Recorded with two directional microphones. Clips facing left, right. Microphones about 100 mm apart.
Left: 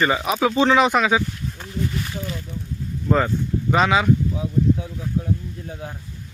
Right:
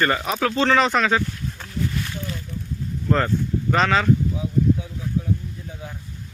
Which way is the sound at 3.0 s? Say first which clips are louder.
Left 1 dB; 5° left (ahead or behind).